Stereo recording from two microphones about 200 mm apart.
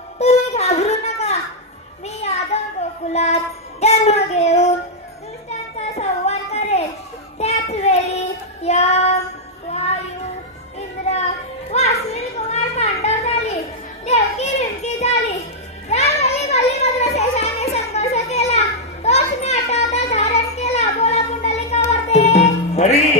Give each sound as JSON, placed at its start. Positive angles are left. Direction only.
{"t": 0.2, "sound": "music", "side_deg": 35}
{"t": 2.0, "sound": "child singing", "side_deg": 35}
{"t": 5.5, "sound": "a sound", "side_deg": 35}
{"t": 7.3, "sound": "child singing", "side_deg": 35}
{"t": 11.1, "sound": "children playing", "side_deg": 30}
{"t": 12.1, "sound": "a sound", "side_deg": 35}
{"t": 14.0, "sound": "children playing", "side_deg": 35}